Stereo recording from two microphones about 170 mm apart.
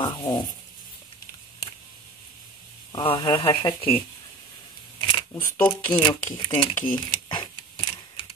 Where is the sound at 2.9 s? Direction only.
30° left (ahead or behind).